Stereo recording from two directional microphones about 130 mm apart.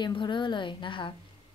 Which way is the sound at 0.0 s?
35° left (ahead or behind).